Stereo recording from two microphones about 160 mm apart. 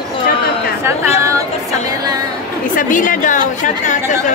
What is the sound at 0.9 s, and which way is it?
Speech, 20° right (ahead or behind).